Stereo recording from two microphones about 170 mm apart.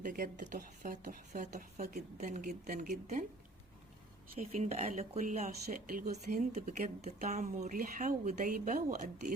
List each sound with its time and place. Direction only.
0.0 s speech: 50° right (ahead or behind)
4.4 s speech: 40° right (ahead or behind)